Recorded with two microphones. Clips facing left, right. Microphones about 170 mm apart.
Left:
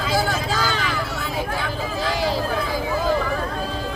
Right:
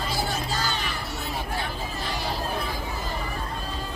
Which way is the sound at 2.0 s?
90° left.